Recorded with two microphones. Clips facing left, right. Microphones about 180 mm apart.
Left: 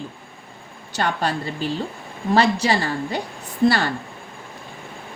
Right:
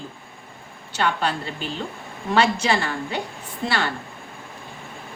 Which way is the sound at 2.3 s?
35° left (ahead or behind).